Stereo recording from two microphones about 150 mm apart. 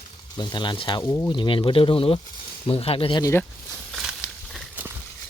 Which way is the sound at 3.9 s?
5° right (ahead or behind).